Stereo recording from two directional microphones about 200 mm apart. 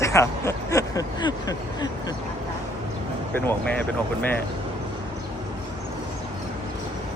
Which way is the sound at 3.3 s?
10° left (ahead or behind).